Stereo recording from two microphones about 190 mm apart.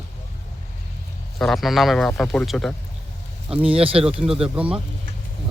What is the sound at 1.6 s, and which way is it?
Speech, centre (ahead or behind).